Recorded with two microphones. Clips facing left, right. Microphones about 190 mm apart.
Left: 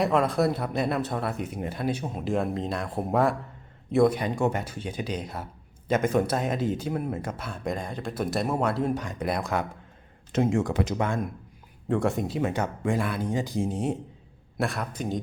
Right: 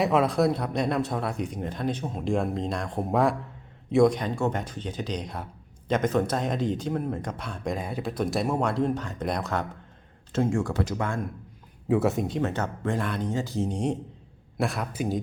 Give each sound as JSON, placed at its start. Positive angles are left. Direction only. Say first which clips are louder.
{"t": 0.0, "sound": "speech", "louder": "right 1 dB", "side_deg": 0}
{"t": 11.9, "sound": "speech", "louder": "right 2 dB", "side_deg": -5}